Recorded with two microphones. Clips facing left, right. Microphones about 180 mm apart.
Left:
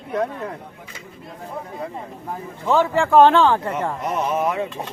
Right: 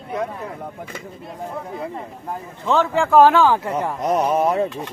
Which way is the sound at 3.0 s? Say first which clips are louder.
Even; centre (ahead or behind).